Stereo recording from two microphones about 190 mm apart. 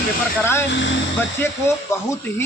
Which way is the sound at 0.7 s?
75° left (ahead or behind).